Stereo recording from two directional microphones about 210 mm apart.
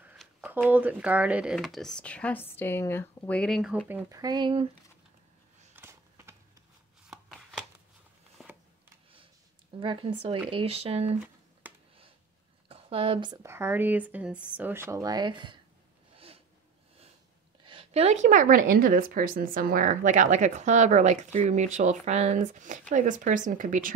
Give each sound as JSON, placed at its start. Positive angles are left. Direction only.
{"t": 0.0, "sound": "speech", "side_deg": -5}
{"t": 3.9, "sound": "speech", "side_deg": -15}
{"t": 5.8, "sound": "a sound", "side_deg": -10}
{"t": 7.1, "sound": "chopping", "side_deg": 0}
{"t": 8.4, "sound": "a sound", "side_deg": 0}
{"t": 9.8, "sound": "speech", "side_deg": -25}
{"t": 12.6, "sound": "speech", "side_deg": -25}
{"t": 17.6, "sound": "a woman's voice", "side_deg": -25}